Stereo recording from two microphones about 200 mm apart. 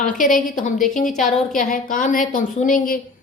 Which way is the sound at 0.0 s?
40° left (ahead or behind).